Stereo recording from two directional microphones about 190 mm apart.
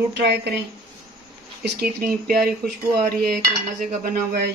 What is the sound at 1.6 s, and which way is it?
Cutlery, 50° right (ahead or behind).